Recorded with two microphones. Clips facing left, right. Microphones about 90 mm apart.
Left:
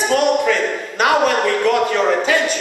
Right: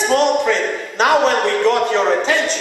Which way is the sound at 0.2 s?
10° left (ahead or behind).